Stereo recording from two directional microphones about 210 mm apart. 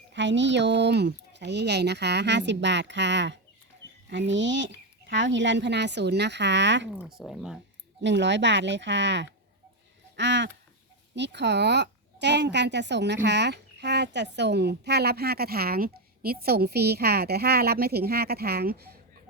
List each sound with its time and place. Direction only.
0.1 s speech: 60° right (ahead or behind)
7.0 s speech: centre (ahead or behind)
8.0 s a child's voice: 60° right (ahead or behind)